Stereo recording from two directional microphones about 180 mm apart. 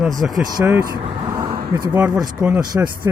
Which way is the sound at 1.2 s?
20° right (ahead or behind).